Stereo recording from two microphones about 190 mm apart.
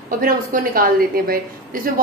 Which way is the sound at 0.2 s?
50° right (ahead or behind).